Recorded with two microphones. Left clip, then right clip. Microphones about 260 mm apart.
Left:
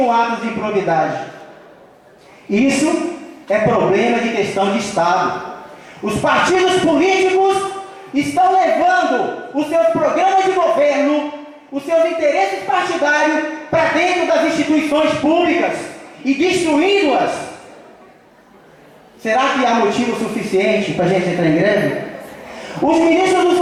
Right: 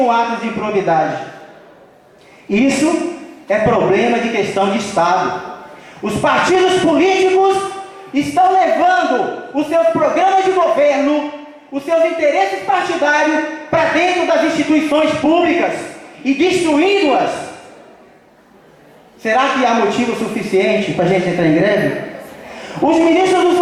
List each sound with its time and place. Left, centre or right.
0.0 s a man's voice: centre
2.7 s a man's voice: centre
13.3 s a sound: centre
14.2 s a man's voice: centre
19.2 s a man's voice: centre